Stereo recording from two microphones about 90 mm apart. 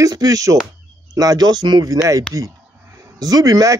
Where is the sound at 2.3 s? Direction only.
40° right (ahead or behind).